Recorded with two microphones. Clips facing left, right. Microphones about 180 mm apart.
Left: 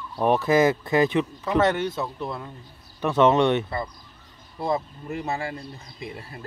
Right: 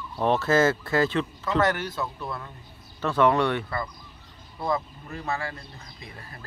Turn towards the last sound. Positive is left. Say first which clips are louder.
# left 7 dB
turn(degrees=25)  # may be behind; listen again after turning